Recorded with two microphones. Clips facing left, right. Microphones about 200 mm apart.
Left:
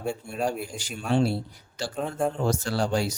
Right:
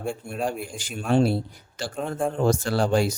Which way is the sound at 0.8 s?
55° right (ahead or behind).